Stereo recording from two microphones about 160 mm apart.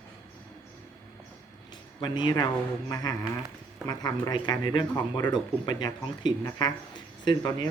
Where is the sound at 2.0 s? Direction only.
30° left (ahead or behind).